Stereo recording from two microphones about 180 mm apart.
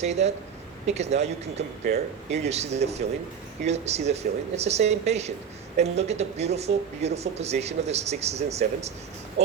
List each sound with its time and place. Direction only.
0.0 s speech: 35° right (ahead or behind)